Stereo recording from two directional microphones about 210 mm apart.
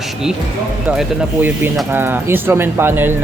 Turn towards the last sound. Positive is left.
turn(degrees=-10)  # may be behind; listen again after turning